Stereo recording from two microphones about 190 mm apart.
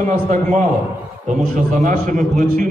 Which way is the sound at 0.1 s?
40° right (ahead or behind).